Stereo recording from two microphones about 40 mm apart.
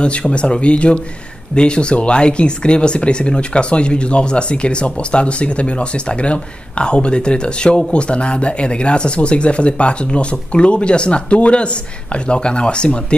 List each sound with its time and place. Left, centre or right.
0.0 s speech: left